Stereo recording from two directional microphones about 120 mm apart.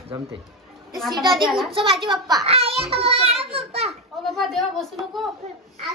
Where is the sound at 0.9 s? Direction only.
Centre (ahead or behind).